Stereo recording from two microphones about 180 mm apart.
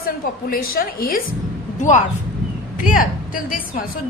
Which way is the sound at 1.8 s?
40° left (ahead or behind).